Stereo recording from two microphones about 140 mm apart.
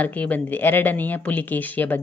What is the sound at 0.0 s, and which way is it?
Speech, 10° left (ahead or behind).